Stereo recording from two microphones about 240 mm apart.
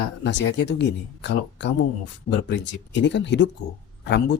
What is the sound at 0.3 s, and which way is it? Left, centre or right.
Speech, left.